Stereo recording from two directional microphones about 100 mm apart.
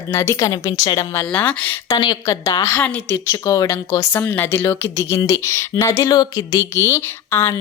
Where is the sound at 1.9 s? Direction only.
40° left (ahead or behind).